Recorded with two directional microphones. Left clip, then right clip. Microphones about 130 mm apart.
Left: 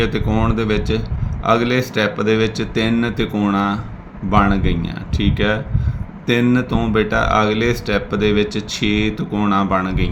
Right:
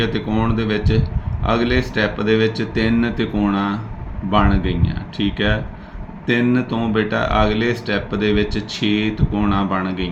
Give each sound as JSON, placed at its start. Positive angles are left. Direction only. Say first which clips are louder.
{"t": 0.0, "sound": "speech", "louder": "left 1 dB", "side_deg": 55}